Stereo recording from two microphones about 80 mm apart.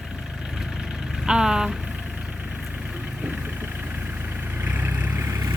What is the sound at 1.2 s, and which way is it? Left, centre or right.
Vehicle, centre.